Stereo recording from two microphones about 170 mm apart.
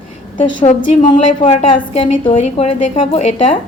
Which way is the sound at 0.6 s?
45° left (ahead or behind).